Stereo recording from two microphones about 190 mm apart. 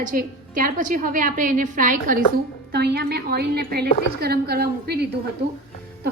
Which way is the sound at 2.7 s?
60° right (ahead or behind).